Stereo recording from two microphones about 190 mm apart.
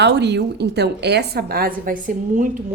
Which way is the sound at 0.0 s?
65° right (ahead or behind).